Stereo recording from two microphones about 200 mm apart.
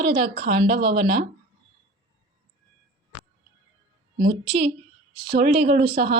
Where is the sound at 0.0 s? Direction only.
50° right (ahead or behind).